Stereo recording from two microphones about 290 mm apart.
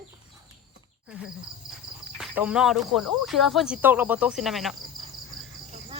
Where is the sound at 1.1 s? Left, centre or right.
Centre.